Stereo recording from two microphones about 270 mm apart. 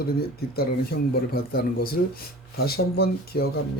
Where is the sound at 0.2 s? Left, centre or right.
Left.